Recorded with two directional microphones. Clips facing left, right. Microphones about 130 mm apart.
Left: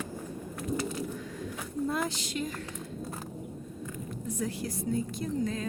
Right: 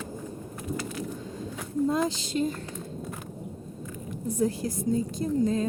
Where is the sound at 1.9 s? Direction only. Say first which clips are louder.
Right 5 dB; 25° right (ahead or behind).